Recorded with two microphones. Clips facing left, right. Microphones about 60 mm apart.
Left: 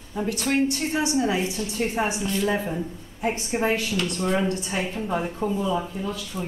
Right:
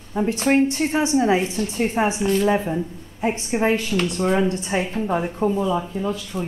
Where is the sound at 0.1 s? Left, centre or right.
Right; by 4.6 s centre.